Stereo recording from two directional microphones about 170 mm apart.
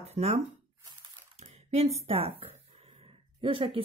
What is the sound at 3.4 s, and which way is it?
Speech, 30° right (ahead or behind).